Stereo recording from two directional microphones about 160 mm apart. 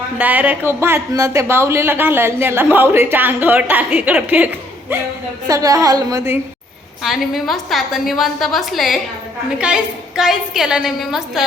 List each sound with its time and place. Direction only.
0.2 s a woman's voice: 10° right (ahead or behind)
7.0 s a woman's voice: centre (ahead or behind)